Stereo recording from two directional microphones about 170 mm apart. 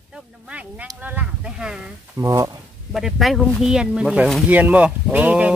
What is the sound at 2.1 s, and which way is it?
Speech, 20° right (ahead or behind).